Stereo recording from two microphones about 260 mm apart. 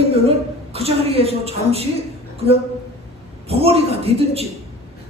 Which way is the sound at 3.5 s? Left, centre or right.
Right.